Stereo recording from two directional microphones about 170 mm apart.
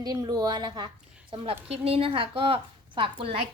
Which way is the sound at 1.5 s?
35° right (ahead or behind).